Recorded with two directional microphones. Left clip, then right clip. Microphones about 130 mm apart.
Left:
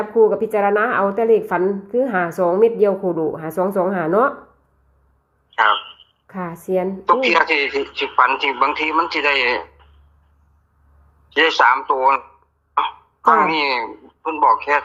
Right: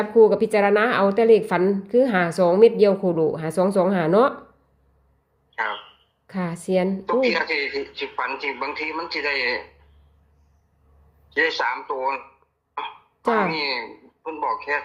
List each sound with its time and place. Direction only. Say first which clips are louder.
0.2 s a woman's voice: left 1 dB; 30° right (ahead or behind); by 4.4 s 15° right (ahead or behind)
5.5 s a sound: left 11 dB; 10° left (ahead or behind)
6.2 s a woman's voice: left 2 dB; 25° right (ahead or behind)
7.0 s speech: left 6 dB; 10° left (ahead or behind)
11.3 s speech: left 8 dB; 10° left (ahead or behind)
12.7 s cough: left 11 dB; 15° left (ahead or behind)
13.4 s speech: left 7 dB; 10° left (ahead or behind)